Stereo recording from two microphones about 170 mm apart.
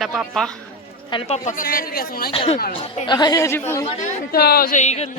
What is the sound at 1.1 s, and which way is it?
Speech, 35° left (ahead or behind).